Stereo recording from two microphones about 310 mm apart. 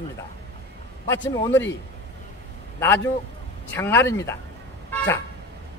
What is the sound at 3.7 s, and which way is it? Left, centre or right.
Speech, centre.